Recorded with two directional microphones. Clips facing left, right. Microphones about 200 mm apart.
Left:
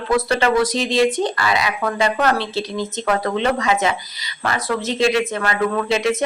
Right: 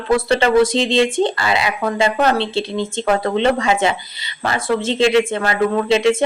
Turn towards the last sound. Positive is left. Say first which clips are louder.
# right 4 dB
turn(degrees=-30)  # may be behind; listen again after turning